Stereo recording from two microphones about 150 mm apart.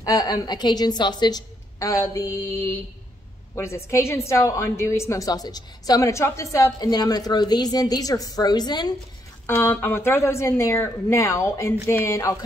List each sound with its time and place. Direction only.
0.0 s a woman's voice: 25° left (ahead or behind)
9.5 s speech: 15° left (ahead or behind)